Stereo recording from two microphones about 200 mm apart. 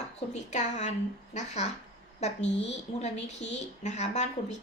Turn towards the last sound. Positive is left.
turn(degrees=35)  # may be behind; listen again after turning